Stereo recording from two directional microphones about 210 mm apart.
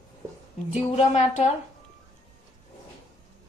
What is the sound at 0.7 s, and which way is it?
Music, 35° left (ahead or behind).